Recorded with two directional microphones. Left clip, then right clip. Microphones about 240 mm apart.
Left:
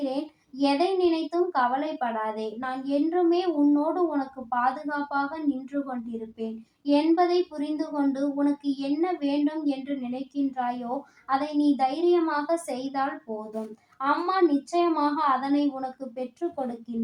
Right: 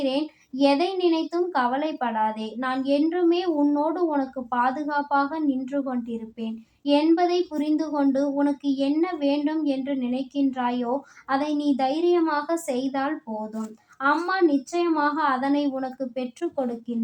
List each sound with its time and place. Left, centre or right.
0.0 s speech: right